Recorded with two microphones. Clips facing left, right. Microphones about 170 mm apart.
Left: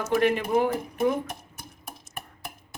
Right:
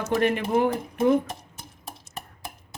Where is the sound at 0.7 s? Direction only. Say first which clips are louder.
Right 4 dB; 25° right (ahead or behind).